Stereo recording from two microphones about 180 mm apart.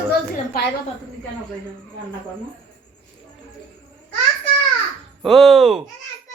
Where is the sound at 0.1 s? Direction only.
65° left (ahead or behind).